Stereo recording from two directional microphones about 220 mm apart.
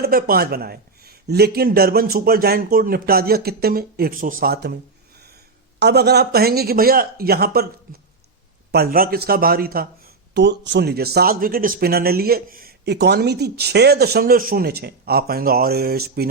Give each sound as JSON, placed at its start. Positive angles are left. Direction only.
{"t": 0.0, "sound": "speech", "side_deg": -40}
{"t": 5.8, "sound": "speech", "side_deg": -50}
{"t": 8.7, "sound": "speech", "side_deg": -45}